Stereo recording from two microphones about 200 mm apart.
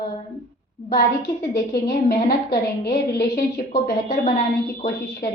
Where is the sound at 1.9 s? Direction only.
50° left (ahead or behind).